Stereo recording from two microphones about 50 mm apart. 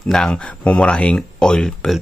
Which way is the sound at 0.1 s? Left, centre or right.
Centre.